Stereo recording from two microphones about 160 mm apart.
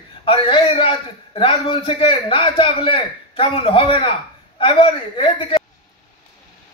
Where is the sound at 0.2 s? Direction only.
35° left (ahead or behind).